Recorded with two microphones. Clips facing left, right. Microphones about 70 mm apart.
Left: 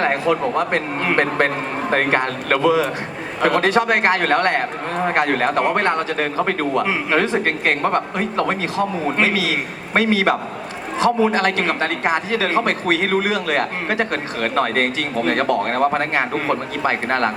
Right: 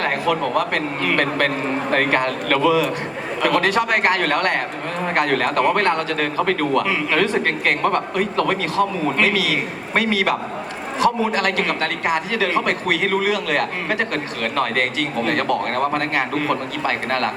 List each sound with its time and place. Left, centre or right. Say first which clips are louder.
0.0 s a woman's voice: left 2 dB; left